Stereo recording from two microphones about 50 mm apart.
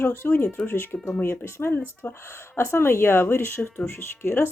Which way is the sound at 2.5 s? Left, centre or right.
Left.